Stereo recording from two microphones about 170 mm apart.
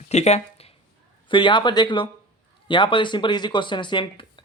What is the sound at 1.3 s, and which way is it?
Speech, 30° left (ahead or behind).